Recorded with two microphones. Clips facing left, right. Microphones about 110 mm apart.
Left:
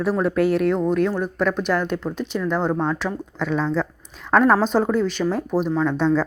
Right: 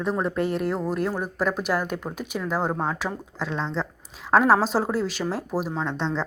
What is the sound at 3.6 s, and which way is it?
Speech, 25° right (ahead or behind).